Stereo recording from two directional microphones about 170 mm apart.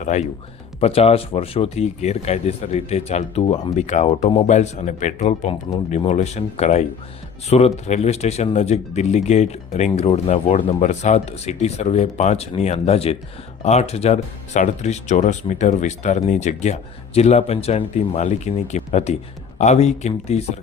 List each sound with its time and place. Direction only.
0.0 s speech: 45° left (ahead or behind)